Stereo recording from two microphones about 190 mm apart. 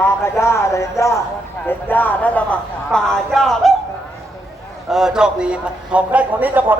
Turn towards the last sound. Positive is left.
turn(degrees=-10)  # may be behind; listen again after turning